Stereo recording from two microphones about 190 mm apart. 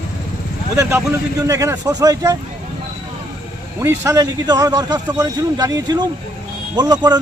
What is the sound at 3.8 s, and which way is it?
A man's voice, 15° right (ahead or behind).